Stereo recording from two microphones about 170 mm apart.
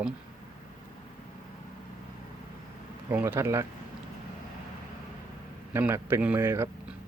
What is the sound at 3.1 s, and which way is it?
Speech, 15° right (ahead or behind).